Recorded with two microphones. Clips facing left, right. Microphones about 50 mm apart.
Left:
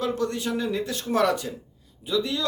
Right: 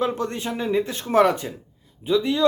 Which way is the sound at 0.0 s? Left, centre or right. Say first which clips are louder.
Right 2 dB; right.